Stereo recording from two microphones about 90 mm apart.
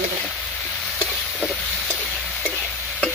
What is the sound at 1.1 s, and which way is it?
Vehicle, centre (ahead or behind).